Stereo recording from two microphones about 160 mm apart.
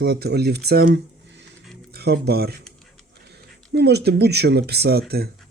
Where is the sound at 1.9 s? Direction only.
80° right.